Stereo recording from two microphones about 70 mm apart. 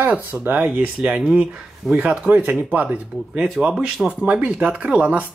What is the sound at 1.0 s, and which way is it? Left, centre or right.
Speech, centre.